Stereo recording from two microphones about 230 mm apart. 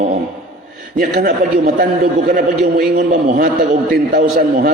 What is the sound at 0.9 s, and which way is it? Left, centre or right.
A man's voice, right.